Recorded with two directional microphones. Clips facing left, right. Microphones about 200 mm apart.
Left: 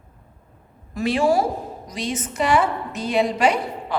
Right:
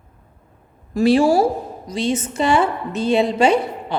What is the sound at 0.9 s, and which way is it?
A woman's voice, 30° right (ahead or behind).